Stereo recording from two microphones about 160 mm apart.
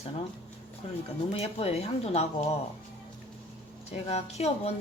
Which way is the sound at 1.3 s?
40° left (ahead or behind).